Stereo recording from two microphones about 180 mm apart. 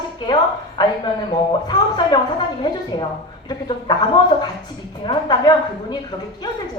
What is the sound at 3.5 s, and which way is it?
Speech, 25° left (ahead or behind).